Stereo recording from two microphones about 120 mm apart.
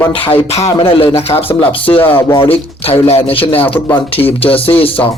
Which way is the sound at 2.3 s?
55° left (ahead or behind).